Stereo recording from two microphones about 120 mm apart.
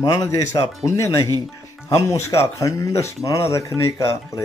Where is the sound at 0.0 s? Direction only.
30° left (ahead or behind).